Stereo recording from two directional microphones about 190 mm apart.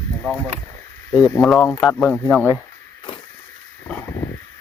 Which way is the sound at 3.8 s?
10° left (ahead or behind).